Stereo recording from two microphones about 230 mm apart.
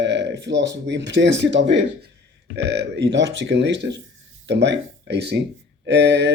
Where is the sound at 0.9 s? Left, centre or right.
Right.